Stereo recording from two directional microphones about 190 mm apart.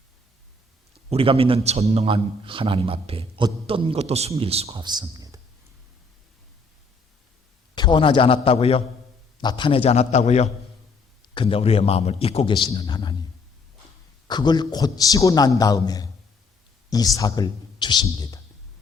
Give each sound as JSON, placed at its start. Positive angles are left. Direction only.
{"t": 1.1, "sound": "a man's voice", "side_deg": -30}
{"t": 7.8, "sound": "a man's voice", "side_deg": 25}
{"t": 14.3, "sound": "a man's voice", "side_deg": 20}